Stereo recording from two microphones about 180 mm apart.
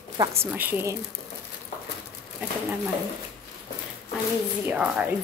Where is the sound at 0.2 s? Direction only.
15° right (ahead or behind).